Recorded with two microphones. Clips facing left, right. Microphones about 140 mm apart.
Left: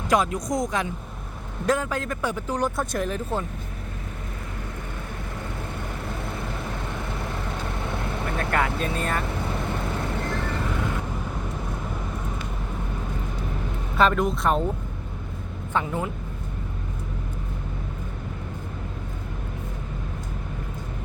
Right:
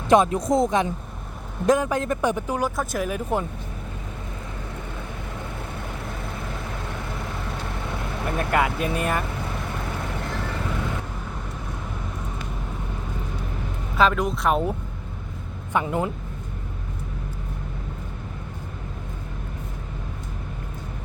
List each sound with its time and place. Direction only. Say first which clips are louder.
0.1 s speech: right 5 dB; 25° right (ahead or behind)
2.6 s speech: even; 5° right (ahead or behind)
8.4 s speech: right 3 dB; 15° right (ahead or behind)
13.9 s speech: even; centre (ahead or behind)
15.7 s speech: right 3 dB; 15° right (ahead or behind)